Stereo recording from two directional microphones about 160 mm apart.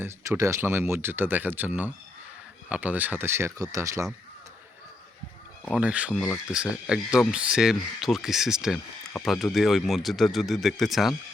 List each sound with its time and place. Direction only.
0.0 s speech: 20° right (ahead or behind)
5.6 s speech: 5° right (ahead or behind)